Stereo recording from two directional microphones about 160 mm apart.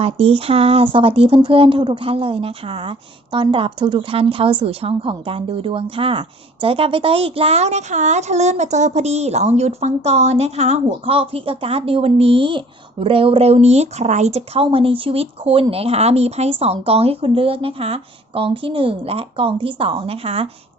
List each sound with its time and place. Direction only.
0.0 s a woman's voice: 35° right (ahead or behind)